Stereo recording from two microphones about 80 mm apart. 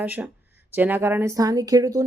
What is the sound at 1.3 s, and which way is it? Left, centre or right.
Speech, right.